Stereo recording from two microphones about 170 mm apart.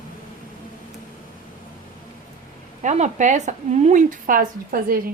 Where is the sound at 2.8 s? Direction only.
45° right (ahead or behind).